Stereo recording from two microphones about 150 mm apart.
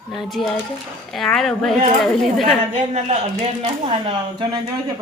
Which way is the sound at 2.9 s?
45° right (ahead or behind).